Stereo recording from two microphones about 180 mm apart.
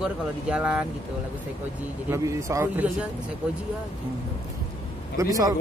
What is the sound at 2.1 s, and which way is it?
Speech, 15° right (ahead or behind).